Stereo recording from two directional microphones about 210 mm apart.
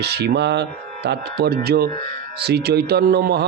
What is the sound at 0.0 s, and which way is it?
Speech, 50° right (ahead or behind).